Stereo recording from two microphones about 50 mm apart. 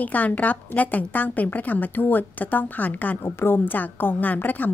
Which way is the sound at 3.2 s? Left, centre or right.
Left.